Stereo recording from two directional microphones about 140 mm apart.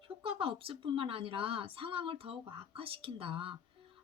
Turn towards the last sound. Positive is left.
turn(degrees=-40)  # may be behind; listen again after turning